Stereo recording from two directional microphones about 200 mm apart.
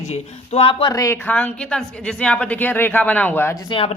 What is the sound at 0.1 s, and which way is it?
A woman's voice, 30° left (ahead or behind).